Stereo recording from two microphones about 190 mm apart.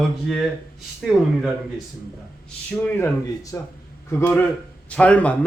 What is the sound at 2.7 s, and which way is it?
Speech, 10° left (ahead or behind).